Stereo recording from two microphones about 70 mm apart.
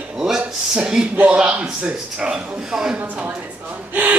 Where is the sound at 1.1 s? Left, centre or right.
Right.